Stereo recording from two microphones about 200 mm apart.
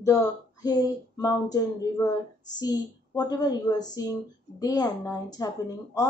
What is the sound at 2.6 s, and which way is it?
Speech, 20° left (ahead or behind).